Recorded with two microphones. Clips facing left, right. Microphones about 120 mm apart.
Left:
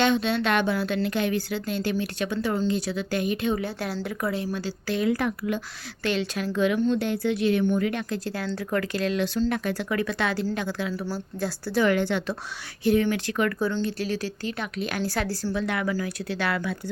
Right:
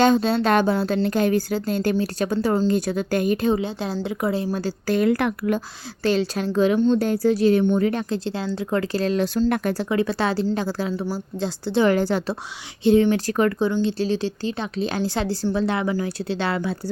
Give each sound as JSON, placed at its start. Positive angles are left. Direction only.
{"t": 0.0, "sound": "speech", "side_deg": -40}
{"t": 3.5, "sound": "a woman's voice", "side_deg": -20}
{"t": 4.4, "sound": "speech", "side_deg": -35}
{"t": 6.0, "sound": "speech", "side_deg": -35}
{"t": 9.9, "sound": "speech", "side_deg": -30}
{"t": 11.1, "sound": "a woman's voice", "side_deg": -20}
{"t": 12.8, "sound": "speech", "side_deg": -25}
{"t": 13.6, "sound": "a woman's voice", "side_deg": -20}